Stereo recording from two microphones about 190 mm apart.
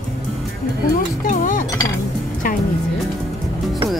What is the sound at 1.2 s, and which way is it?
Speech, 45° left (ahead or behind).